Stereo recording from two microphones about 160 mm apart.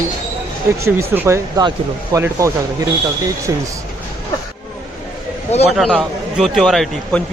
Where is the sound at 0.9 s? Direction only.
15° right (ahead or behind).